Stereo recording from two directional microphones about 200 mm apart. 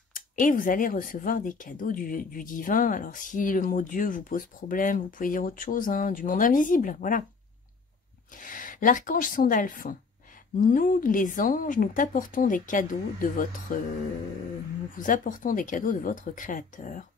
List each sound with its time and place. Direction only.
0.1 s speech: 45° left (ahead or behind)
8.3 s a woman's voice: 40° left (ahead or behind)
15.0 s a woman's voice: 40° left (ahead or behind)